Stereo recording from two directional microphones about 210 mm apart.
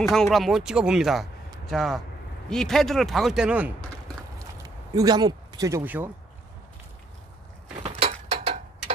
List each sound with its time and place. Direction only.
0.0 s speech: centre (ahead or behind)
4.6 s speech: 20° right (ahead or behind)
7.8 s a sound: 30° right (ahead or behind)